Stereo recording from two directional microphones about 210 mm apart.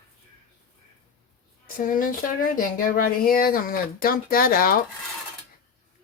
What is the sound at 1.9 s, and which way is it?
Speech, 40° left (ahead or behind).